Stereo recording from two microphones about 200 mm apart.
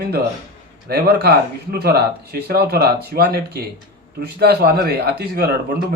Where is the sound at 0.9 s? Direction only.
50° right (ahead or behind).